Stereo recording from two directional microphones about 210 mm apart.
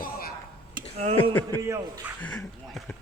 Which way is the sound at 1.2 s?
10° left (ahead or behind).